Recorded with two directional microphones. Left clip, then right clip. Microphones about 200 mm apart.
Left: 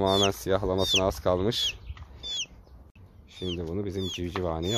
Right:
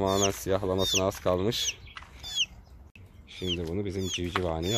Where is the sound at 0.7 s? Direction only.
20° left (ahead or behind).